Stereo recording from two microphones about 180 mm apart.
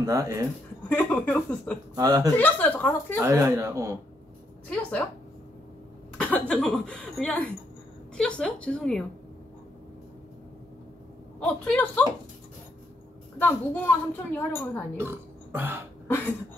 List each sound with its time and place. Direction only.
0.0 s speech: 20° right (ahead or behind)
0.8 s a woman's voice: 10° left (ahead or behind)
2.0 s speech: 20° right (ahead or behind)
2.3 s a woman's voice: 10° left (ahead or behind)
3.2 s speech: 15° right (ahead or behind)
6.1 s speech: 5° left (ahead or behind)
11.3 s a woman's voice: 5° left (ahead or behind)
13.4 s a woman's voice: 10° left (ahead or behind)
15.0 s burping: 10° right (ahead or behind)